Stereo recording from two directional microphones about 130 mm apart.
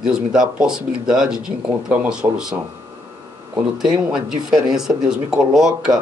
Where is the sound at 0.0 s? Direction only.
5° right (ahead or behind).